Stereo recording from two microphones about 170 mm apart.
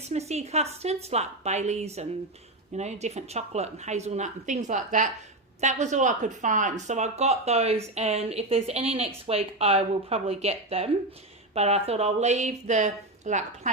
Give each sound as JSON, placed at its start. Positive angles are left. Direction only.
{"t": 0.1, "sound": "a woman's voice", "side_deg": -40}